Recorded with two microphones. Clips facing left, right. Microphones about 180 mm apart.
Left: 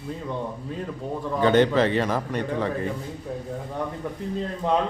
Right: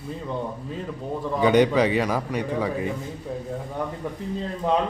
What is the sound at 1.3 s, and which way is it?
A man's voice, 10° right (ahead or behind).